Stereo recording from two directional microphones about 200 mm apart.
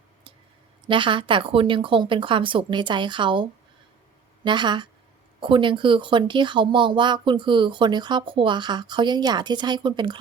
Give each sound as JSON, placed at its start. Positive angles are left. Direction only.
{"t": 0.9, "sound": "speech", "side_deg": -25}